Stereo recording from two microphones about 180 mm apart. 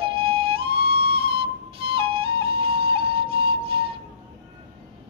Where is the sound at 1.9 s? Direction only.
30° right (ahead or behind).